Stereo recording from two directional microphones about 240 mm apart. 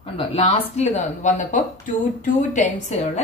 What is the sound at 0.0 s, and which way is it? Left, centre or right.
Speech, left.